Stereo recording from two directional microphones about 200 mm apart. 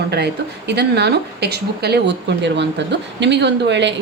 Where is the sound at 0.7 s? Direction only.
55° right (ahead or behind).